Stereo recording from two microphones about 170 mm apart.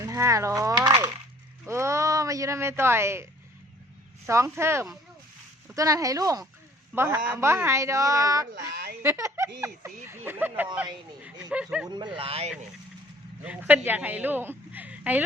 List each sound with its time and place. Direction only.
0.0 s speech: 15° right (ahead or behind)
1.6 s a sound: 15° right (ahead or behind)
4.3 s speech: 15° right (ahead or behind)
8.7 s a woman's voice: 70° right (ahead or behind)
9.0 s speech: 15° right (ahead or behind)
12.1 s speech: 35° right (ahead or behind)
13.4 s a woman's voice: 10° right (ahead or behind)